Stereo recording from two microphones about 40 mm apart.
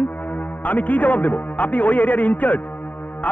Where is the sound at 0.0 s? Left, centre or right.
Left.